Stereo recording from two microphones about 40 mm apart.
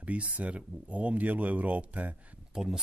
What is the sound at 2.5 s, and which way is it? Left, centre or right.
Speech, centre.